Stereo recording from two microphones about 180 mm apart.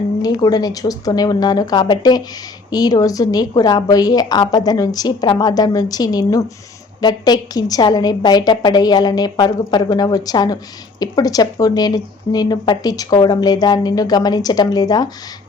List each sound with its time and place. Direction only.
0.2 s speech: 20° left (ahead or behind)